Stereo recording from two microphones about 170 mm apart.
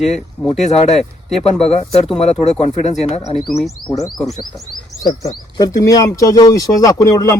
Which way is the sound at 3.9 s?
20° left (ahead or behind).